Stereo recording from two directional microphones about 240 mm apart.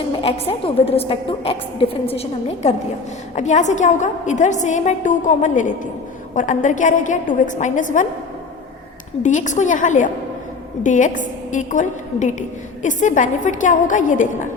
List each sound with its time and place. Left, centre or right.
0.2 s a woman's voice: left
9.2 s a woman's voice: left